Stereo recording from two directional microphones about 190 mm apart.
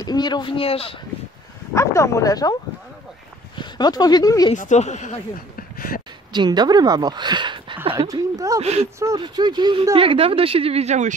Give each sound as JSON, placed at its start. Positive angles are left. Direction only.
{"t": 0.0, "sound": "speech", "side_deg": 20}
{"t": 1.7, "sound": "speech", "side_deg": 15}
{"t": 3.5, "sound": "speech", "side_deg": 20}
{"t": 4.6, "sound": "speech", "side_deg": 40}
{"t": 5.6, "sound": "a sound", "side_deg": 50}
{"t": 6.3, "sound": "speech", "side_deg": -20}
{"t": 8.5, "sound": "speech", "side_deg": -35}
{"t": 9.0, "sound": "speech", "side_deg": -20}